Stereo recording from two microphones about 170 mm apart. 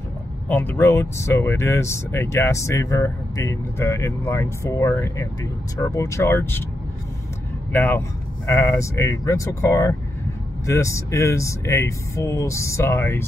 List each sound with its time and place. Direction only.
0.5 s speech: 10° left (ahead or behind)
7.7 s speech: 10° left (ahead or behind)